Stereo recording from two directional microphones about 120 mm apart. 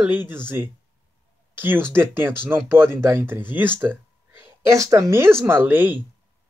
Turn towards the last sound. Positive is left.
turn(degrees=-15)  # may be behind; listen again after turning